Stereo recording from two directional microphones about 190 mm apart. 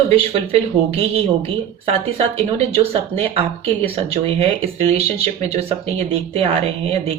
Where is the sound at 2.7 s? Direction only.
30° right (ahead or behind).